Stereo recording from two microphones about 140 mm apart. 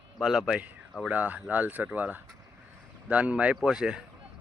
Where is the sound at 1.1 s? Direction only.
10° right (ahead or behind).